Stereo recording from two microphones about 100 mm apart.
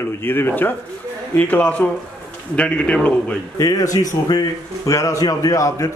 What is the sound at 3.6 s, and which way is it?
Speech, 40° left (ahead or behind).